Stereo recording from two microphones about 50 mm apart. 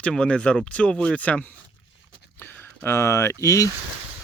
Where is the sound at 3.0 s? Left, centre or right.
Left.